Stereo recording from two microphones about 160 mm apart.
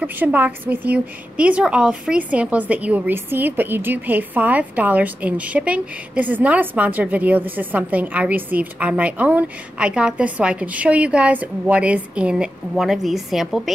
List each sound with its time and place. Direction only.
0.0 s a woman's voice: 10° right (ahead or behind)